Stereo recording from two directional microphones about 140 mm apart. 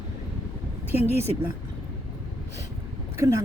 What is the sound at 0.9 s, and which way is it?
Speech, 15° right (ahead or behind).